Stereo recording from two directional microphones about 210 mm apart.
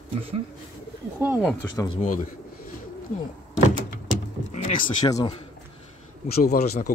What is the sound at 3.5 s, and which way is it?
Door, 35° left (ahead or behind).